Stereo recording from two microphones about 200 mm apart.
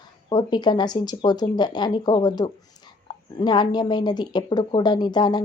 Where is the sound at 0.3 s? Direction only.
20° left (ahead or behind).